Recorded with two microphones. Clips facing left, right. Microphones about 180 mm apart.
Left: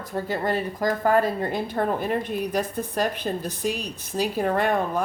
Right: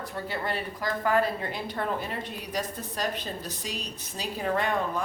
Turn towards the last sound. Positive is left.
turn(degrees=55)  # may be behind; listen again after turning